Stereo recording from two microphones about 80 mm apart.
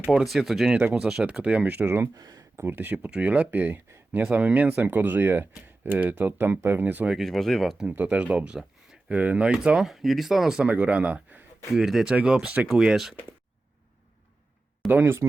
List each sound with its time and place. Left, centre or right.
0.0 s speech: centre
0.8 s speech: right
1.0 s speech: centre; by 2.0 s right
2.1 s speech: right
2.6 s speech: right
7.1 s speech: centre
7.9 s speech: centre
10.7 s speech: centre
11.7 s speech: centre
14.8 s speech: right